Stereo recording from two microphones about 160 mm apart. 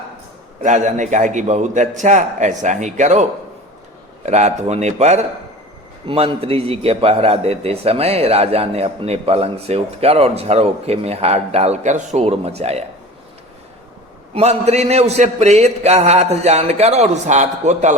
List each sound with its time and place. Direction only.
0.6 s a man's voice: 50° right (ahead or behind)
4.3 s a man's voice: 45° right (ahead or behind)
14.3 s a man's voice: 40° right (ahead or behind)